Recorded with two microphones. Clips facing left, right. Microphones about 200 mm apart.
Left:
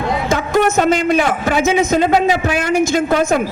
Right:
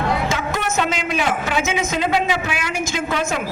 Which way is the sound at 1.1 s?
40° left (ahead or behind).